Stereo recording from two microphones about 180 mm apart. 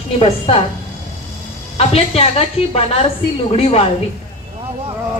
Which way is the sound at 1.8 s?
35° left (ahead or behind).